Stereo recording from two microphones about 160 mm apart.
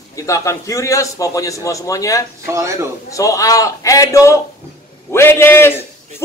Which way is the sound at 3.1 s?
20° left (ahead or behind).